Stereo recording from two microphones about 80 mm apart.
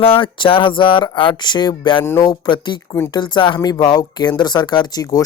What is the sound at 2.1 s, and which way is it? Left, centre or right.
Speech, left.